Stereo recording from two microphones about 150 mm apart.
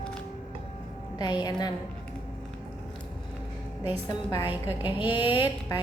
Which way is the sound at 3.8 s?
30° left (ahead or behind).